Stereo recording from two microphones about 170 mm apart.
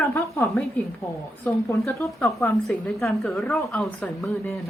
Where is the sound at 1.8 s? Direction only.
15° left (ahead or behind).